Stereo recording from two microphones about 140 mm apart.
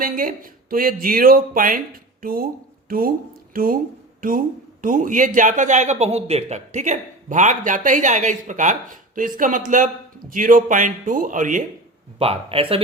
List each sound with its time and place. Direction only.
0.0 s speech: 85° right
4.2 s a man's voice: 80° right
12.2 s speech: 45° right (ahead or behind)